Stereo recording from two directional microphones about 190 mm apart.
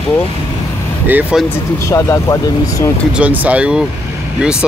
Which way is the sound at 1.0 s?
10° right (ahead or behind).